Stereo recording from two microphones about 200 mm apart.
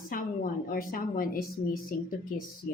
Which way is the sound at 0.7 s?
45° left (ahead or behind).